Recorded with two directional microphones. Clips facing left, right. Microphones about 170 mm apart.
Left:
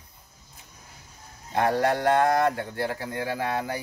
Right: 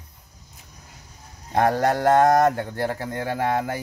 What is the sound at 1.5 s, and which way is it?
Speech, 45° right (ahead or behind).